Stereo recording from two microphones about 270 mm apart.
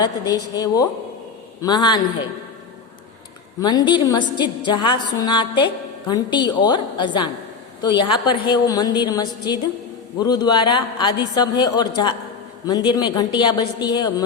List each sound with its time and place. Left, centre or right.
0.0 s a man's voice: centre
3.6 s a man's voice: centre